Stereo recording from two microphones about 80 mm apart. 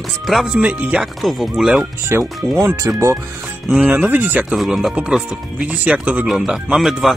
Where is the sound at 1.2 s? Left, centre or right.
Centre.